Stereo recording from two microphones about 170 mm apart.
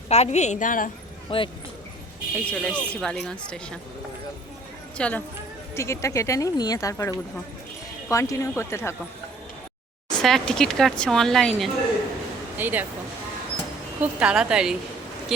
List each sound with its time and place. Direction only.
0.1 s a woman's voice: 40° left (ahead or behind)
1.3 s speech: 30° left (ahead or behind)
2.4 s speech: 5° left (ahead or behind)
4.9 s speech: 5° left (ahead or behind)
10.2 s speech: 5° left (ahead or behind)
12.5 s speech: 10° right (ahead or behind)
14.0 s speech: 5° right (ahead or behind)